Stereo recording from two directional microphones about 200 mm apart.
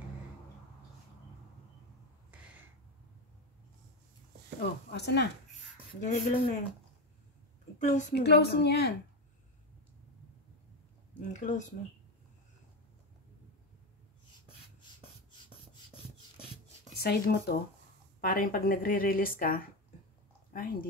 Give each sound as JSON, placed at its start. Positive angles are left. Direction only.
{"t": 4.6, "sound": "a woman's voice", "side_deg": 55}
{"t": 6.0, "sound": "speech", "side_deg": 35}
{"t": 7.8, "sound": "speech", "side_deg": 40}
{"t": 8.1, "sound": "a woman's voice", "side_deg": 55}
{"t": 11.3, "sound": "speech", "side_deg": 35}
{"t": 17.0, "sound": "speech", "side_deg": 55}